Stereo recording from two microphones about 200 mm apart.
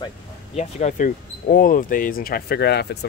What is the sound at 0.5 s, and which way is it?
Speech, 40° left (ahead or behind).